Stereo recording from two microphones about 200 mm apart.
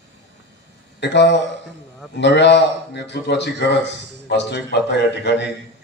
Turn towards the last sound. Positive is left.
turn(degrees=60)  # may be behind; listen again after turning